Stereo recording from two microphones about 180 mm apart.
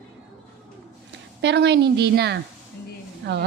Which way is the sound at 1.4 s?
70° right (ahead or behind).